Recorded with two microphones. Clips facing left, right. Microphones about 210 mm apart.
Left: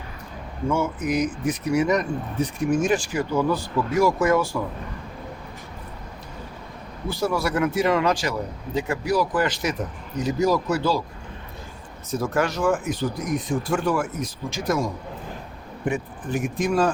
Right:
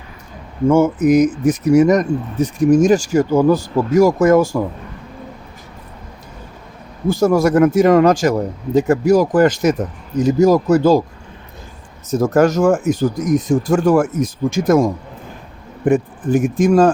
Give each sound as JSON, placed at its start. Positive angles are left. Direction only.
{"t": 0.7, "sound": "speech", "side_deg": -45}
{"t": 7.1, "sound": "speech", "side_deg": -45}
{"t": 12.1, "sound": "speech", "side_deg": -45}
{"t": 15.9, "sound": "speech", "side_deg": -45}